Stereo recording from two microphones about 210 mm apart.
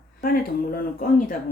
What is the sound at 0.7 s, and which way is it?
Speech, 40° left (ahead or behind).